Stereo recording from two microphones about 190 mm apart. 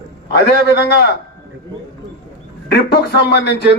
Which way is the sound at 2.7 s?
55° left (ahead or behind).